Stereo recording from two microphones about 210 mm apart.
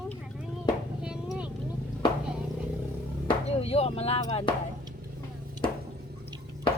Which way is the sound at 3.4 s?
30° left (ahead or behind).